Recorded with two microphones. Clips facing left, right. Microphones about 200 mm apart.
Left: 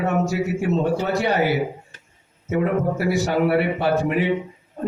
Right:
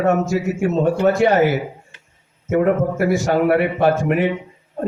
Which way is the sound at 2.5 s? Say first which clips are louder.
Right 4 dB; 50° right (ahead or behind).